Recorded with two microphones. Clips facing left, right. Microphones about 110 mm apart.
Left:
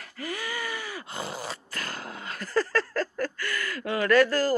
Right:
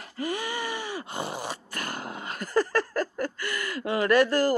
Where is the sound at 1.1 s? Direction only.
15° right (ahead or behind).